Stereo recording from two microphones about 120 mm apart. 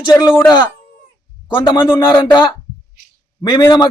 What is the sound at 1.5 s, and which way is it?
Speech, 35° left (ahead or behind).